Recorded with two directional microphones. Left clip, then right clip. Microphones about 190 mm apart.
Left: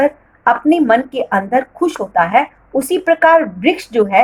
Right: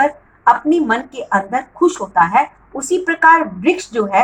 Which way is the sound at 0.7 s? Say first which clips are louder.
Left 4 dB; 45° left (ahead or behind).